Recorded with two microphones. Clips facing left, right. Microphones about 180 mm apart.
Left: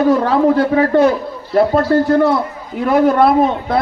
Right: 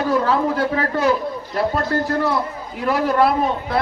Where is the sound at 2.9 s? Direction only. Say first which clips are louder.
Left 6 dB; 50° left (ahead or behind).